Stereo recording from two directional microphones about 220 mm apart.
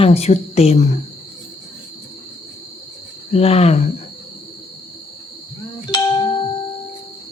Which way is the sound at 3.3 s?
30° left (ahead or behind).